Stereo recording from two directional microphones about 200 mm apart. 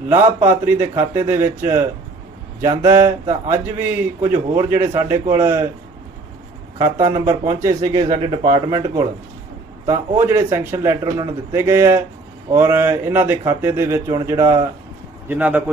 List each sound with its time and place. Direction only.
0.1 s a man's voice: 10° right (ahead or behind)
6.8 s a man's voice: 15° right (ahead or behind)